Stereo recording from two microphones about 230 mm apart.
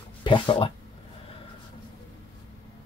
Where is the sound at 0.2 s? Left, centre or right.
Left.